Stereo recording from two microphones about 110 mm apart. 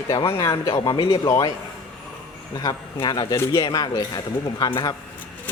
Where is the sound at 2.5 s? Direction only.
35° left (ahead or behind).